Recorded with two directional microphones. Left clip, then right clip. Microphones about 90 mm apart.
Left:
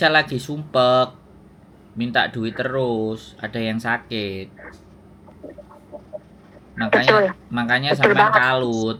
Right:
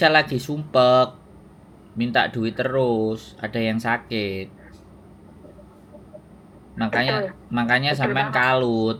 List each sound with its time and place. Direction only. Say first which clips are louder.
0.0 s speech: even; centre (ahead or behind)
6.7 s speech: left 5 dB; centre (ahead or behind)
7.1 s speech: left 9 dB; 45° left (ahead or behind)
7.5 s speech: right 3 dB; centre (ahead or behind)